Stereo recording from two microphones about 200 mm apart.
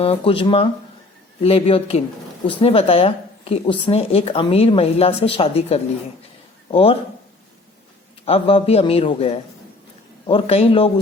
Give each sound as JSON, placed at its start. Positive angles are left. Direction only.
{"t": 0.0, "sound": "speech", "side_deg": 30}
{"t": 8.2, "sound": "speech", "side_deg": 30}